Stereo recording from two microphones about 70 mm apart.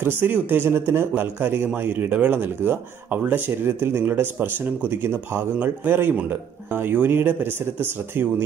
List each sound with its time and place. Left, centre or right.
0.0 s speech: right